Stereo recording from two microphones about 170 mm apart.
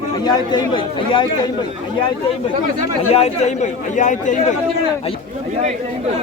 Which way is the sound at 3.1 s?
40° left (ahead or behind).